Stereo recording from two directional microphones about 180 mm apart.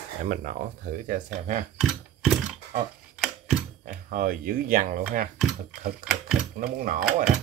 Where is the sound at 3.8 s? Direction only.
50° right (ahead or behind).